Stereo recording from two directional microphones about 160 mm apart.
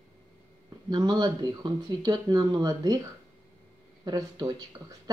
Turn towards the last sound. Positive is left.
turn(degrees=-25)  # may be behind; listen again after turning